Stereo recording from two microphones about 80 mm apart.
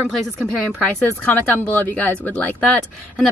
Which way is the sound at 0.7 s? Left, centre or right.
Centre.